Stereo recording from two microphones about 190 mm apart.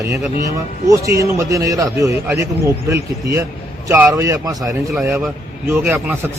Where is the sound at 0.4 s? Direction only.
15° right (ahead or behind).